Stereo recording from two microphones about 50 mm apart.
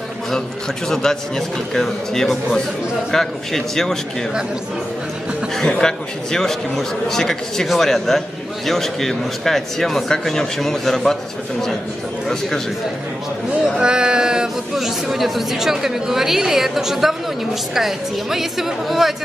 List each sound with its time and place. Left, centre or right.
0.8 s speech: centre
5.6 s a woman's voice: centre
13.7 s a woman's voice: centre